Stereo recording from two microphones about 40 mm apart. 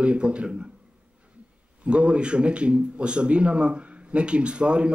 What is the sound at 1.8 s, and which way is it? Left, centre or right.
A man's voice, right.